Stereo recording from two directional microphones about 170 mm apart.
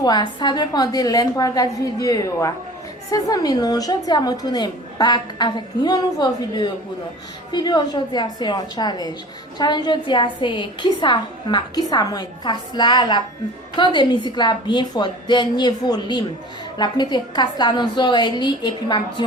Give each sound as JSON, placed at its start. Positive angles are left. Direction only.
{"t": 0.0, "sound": "a woman's voice", "side_deg": 25}